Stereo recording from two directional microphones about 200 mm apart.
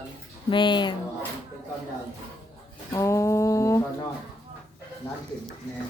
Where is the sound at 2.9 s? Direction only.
15° left (ahead or behind).